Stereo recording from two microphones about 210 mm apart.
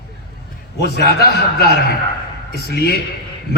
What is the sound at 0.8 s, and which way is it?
A man's voice, 50° left (ahead or behind).